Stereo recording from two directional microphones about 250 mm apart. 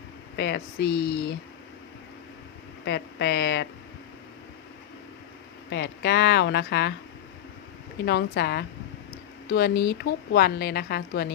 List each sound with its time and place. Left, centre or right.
0.3 s a woman's voice: left
2.8 s speech: left
5.7 s speech: left
8.0 s a woman's voice: left